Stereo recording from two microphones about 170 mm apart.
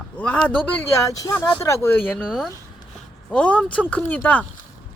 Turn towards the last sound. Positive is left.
turn(degrees=10)  # may be behind; listen again after turning